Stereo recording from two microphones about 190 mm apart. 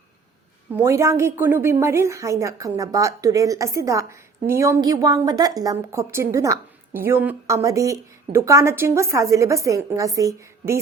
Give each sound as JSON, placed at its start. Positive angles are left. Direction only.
{"t": 0.7, "sound": "a woman's voice", "side_deg": -15}